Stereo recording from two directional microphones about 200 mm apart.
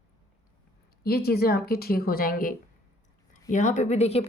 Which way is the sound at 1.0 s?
50° left (ahead or behind).